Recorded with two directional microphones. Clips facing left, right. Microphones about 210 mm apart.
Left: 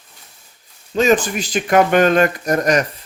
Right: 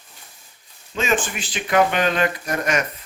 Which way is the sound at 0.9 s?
40° left (ahead or behind).